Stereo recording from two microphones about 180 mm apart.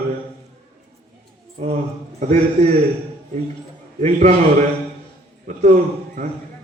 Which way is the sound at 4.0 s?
40° right (ahead or behind).